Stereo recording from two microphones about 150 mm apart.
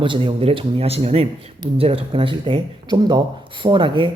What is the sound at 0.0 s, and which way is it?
Speech, 35° right (ahead or behind).